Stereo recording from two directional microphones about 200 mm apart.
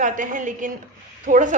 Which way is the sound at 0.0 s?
40° right (ahead or behind).